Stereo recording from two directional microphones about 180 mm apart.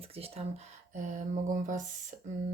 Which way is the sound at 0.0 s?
35° right (ahead or behind).